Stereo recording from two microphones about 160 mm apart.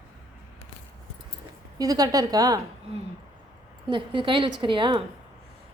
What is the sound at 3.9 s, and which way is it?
A woman's voice, 30° right (ahead or behind).